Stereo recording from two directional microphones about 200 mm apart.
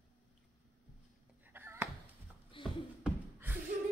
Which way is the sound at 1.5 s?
10° right (ahead or behind).